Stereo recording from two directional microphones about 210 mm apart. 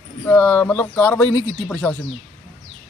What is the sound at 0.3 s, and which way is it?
A man's voice, 10° left (ahead or behind).